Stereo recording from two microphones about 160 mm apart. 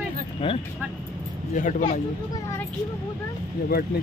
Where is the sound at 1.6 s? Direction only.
55° left (ahead or behind).